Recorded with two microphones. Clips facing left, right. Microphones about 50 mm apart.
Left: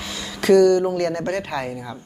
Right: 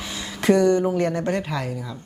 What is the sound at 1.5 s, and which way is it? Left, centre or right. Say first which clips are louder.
Speech: left 1 dB; centre.